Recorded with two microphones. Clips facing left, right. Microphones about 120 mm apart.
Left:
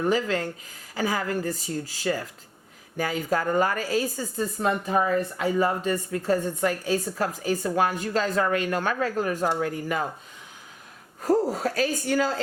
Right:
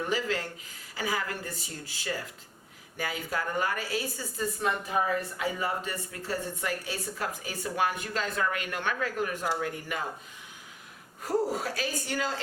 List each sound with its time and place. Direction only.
0.0 s a woman's voice: 45° left (ahead or behind)
11.2 s speech: 45° left (ahead or behind)